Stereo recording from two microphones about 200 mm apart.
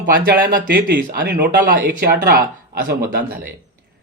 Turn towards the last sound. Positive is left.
turn(degrees=-50)  # may be behind; listen again after turning